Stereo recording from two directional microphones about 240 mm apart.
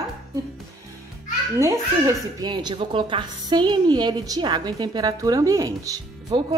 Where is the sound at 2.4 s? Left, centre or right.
Centre.